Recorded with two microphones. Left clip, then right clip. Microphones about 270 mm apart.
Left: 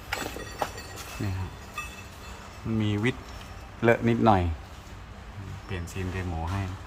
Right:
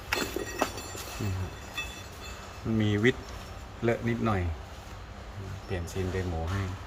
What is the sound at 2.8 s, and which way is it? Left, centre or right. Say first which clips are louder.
Speech: right 3 dB; centre.